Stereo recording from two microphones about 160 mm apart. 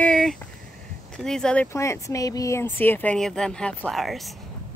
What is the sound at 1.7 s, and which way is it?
Speech, 20° left (ahead or behind).